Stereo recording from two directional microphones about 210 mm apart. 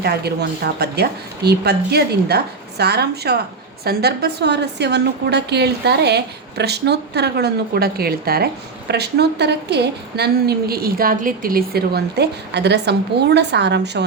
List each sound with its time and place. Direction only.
0.0 s a woman's voice: 50° right (ahead or behind)